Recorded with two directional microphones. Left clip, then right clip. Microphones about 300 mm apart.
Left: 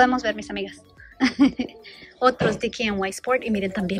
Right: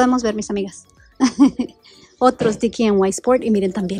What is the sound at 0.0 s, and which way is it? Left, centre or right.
A woman's voice, right.